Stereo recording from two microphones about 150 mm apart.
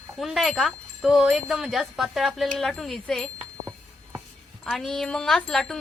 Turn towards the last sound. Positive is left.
turn(degrees=5)  # may be behind; listen again after turning